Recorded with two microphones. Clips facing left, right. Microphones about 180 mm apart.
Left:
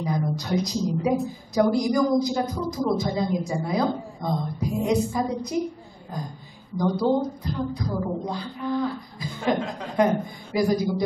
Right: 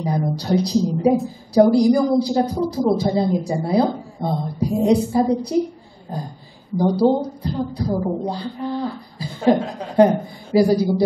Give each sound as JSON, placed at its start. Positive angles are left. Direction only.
{"t": 0.0, "sound": "a woman's voice", "side_deg": -35}